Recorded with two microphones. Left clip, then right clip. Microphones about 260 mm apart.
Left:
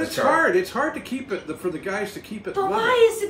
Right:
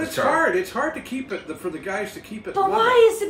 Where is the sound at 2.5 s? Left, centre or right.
Centre.